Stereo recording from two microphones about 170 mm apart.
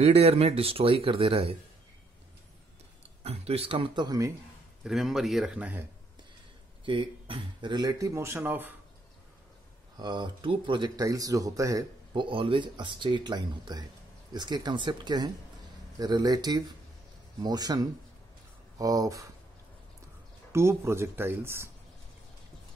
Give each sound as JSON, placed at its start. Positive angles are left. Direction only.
{"t": 0.0, "sound": "speech", "side_deg": -35}
{"t": 3.3, "sound": "speech", "side_deg": -35}
{"t": 4.8, "sound": "speech", "side_deg": 0}
{"t": 6.8, "sound": "speech", "side_deg": -30}
{"t": 9.9, "sound": "speech", "side_deg": -25}
{"t": 20.5, "sound": "speech", "side_deg": -15}